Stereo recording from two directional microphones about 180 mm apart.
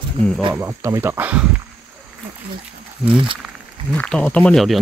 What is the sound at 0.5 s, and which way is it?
Speech, 15° right (ahead or behind).